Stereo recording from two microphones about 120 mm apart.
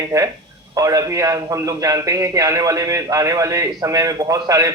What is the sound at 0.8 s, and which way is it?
A man's voice, 30° right (ahead or behind).